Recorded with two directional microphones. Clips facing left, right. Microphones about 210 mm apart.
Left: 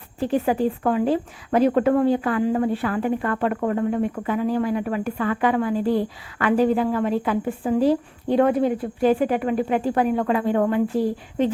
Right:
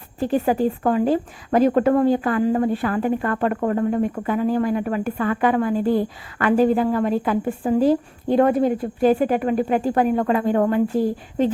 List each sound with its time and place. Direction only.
0.2 s a woman's voice: 40° right (ahead or behind)